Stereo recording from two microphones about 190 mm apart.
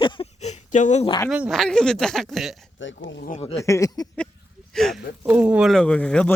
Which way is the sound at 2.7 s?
80° left.